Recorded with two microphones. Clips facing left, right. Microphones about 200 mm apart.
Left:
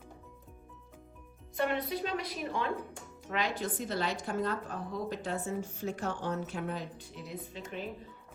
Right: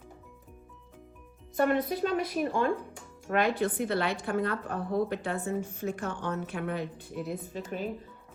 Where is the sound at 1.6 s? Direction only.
45° right (ahead or behind).